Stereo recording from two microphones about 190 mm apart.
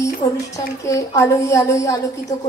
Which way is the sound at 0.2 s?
25° left (ahead or behind).